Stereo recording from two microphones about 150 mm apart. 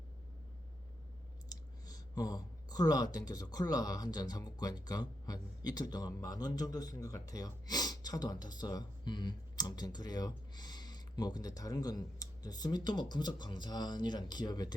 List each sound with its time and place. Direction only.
1.5 s clicking: 25° left (ahead or behind)
3.5 s speech: 25° left (ahead or behind)